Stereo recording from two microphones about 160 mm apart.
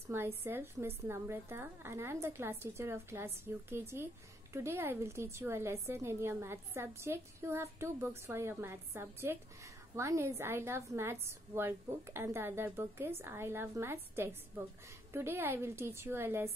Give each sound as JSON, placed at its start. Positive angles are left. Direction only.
{"t": 0.1, "sound": "a woman's voice", "side_deg": -15}